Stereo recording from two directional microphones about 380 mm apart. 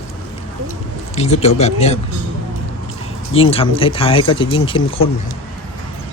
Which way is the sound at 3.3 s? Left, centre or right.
Centre.